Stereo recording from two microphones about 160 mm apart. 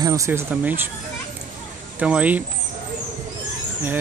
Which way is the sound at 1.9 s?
10° right (ahead or behind).